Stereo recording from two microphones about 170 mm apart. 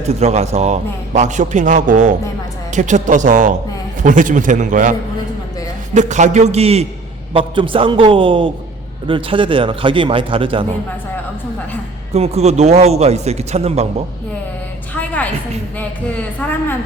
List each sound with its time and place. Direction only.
0.2 s a man's voice: 40° right (ahead or behind)
12.1 s a man's voice: 40° right (ahead or behind)
14.9 s music: 10° left (ahead or behind)
16.4 s a woman's voice: 10° left (ahead or behind)